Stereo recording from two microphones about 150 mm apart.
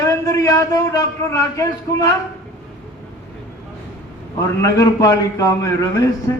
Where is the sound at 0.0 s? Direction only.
20° left (ahead or behind).